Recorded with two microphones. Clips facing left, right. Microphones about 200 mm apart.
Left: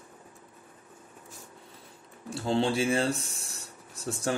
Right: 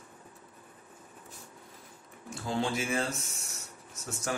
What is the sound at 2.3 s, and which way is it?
Speech, 30° left (ahead or behind).